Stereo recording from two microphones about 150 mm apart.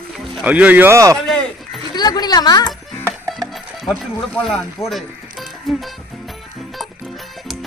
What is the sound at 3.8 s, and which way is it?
Speech, 5° left (ahead or behind).